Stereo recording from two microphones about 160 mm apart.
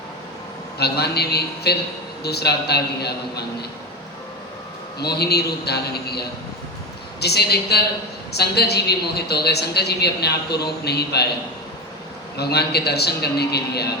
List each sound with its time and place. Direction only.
0.8 s a woman's voice: 90° left
4.9 s a woman's voice: 90° left
12.4 s a woman's voice: 90° left